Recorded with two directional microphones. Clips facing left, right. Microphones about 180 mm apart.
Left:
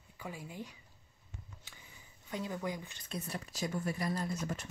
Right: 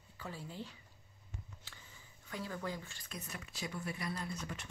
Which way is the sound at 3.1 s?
35° left (ahead or behind).